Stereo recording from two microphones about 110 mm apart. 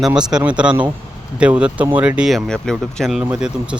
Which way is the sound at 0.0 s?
5° right (ahead or behind).